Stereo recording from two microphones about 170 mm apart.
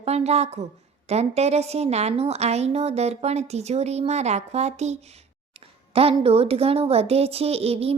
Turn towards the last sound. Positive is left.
turn(degrees=-35)  # may be behind; listen again after turning